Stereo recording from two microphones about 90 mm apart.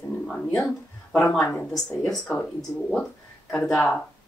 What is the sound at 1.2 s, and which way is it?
Speech, 35° left (ahead or behind).